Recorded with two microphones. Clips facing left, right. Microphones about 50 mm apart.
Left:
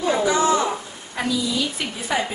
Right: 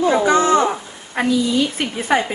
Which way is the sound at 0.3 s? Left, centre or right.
Right.